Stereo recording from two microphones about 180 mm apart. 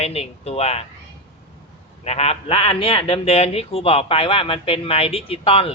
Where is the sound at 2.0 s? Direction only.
35° left (ahead or behind).